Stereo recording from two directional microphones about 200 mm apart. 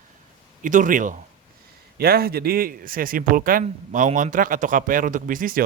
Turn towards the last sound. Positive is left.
turn(degrees=-45)  # may be behind; listen again after turning